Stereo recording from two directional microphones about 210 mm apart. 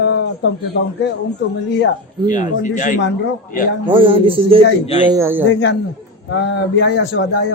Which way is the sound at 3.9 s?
25° right (ahead or behind).